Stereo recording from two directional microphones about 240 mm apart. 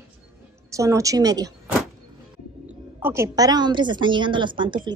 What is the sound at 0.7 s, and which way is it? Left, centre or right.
Speech, centre.